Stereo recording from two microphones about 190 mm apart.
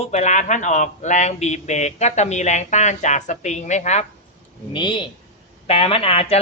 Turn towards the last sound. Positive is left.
turn(degrees=30)  # may be behind; listen again after turning